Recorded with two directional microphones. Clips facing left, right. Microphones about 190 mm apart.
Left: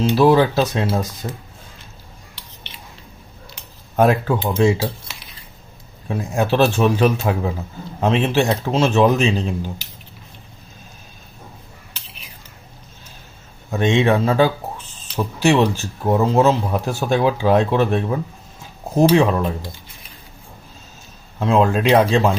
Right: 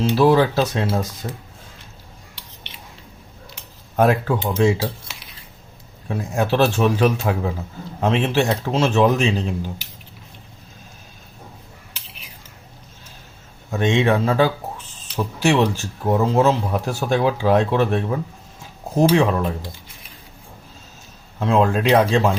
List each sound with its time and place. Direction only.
0.2 s speech: 15° left (ahead or behind)
3.9 s speech: 25° left (ahead or behind)
6.1 s speech: 20° left (ahead or behind)
13.7 s speech: 25° left (ahead or behind)
21.3 s speech: 20° left (ahead or behind)